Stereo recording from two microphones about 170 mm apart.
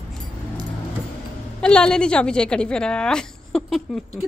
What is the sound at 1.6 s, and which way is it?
A woman's voice, 5° left (ahead or behind).